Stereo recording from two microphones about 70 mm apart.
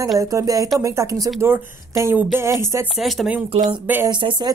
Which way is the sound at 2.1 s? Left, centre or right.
Right.